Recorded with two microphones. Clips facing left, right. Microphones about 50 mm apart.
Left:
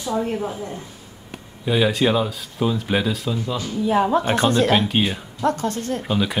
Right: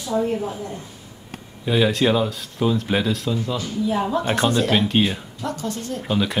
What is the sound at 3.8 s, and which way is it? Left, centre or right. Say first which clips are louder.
Speech: left 4 dB; left.